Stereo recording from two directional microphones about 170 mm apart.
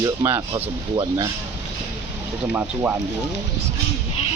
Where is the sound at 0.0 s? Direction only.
20° right (ahead or behind).